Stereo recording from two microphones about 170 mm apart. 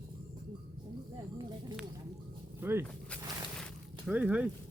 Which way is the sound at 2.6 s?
15° right (ahead or behind).